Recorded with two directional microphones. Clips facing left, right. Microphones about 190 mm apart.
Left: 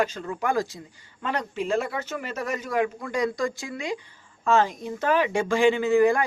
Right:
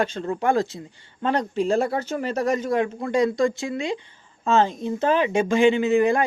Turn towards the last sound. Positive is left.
turn(degrees=-20)  # may be behind; listen again after turning